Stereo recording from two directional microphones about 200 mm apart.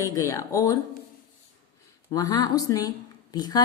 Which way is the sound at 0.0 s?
15° left (ahead or behind).